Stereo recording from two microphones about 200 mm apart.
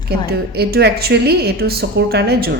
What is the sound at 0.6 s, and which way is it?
A woman's voice, 55° right (ahead or behind).